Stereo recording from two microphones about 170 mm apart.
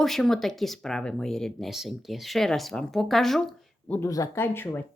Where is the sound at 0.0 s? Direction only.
Centre (ahead or behind).